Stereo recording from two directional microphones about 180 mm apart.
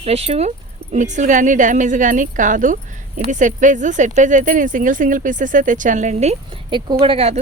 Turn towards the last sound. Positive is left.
turn(degrees=-35)  # may be behind; listen again after turning